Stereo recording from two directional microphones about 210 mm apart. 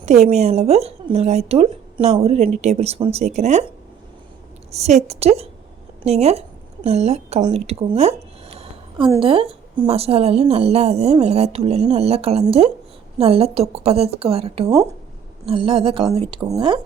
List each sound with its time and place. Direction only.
0.0 s speech: 30° right (ahead or behind)
4.7 s a woman's voice: 30° right (ahead or behind)